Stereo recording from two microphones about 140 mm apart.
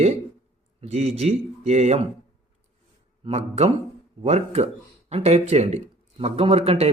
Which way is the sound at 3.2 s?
50° right (ahead or behind).